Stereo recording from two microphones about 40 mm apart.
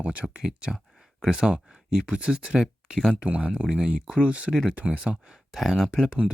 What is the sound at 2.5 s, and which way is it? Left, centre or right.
Speech, centre.